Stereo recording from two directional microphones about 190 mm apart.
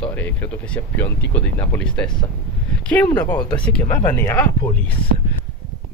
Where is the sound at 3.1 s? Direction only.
10° left (ahead or behind).